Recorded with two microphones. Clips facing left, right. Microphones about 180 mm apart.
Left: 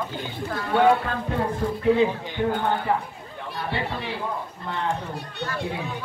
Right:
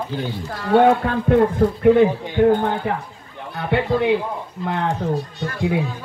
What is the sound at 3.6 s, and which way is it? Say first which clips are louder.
Speech: right 10 dB; 60° right (ahead or behind).